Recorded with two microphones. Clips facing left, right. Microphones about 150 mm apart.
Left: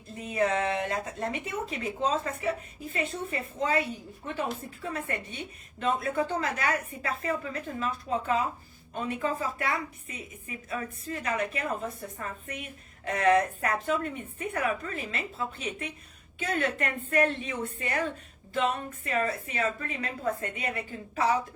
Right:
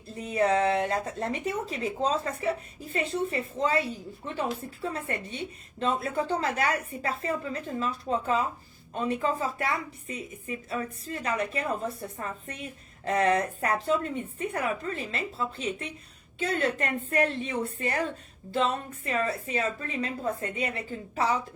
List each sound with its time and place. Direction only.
0.3 s a woman's voice: 35° right (ahead or behind)